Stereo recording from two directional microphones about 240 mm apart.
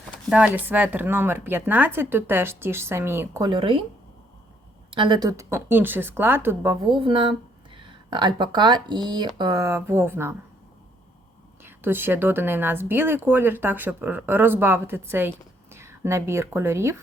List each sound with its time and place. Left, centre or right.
0.3 s speech: centre; by 3.8 s right
4.9 s speech: centre
11.6 s speech: centre